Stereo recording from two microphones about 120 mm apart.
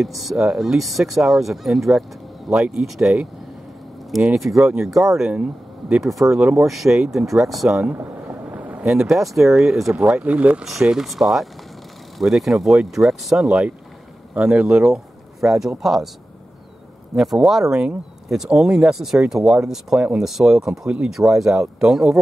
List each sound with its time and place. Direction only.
0.0 s speech: centre (ahead or behind)
17.2 s speech: centre (ahead or behind)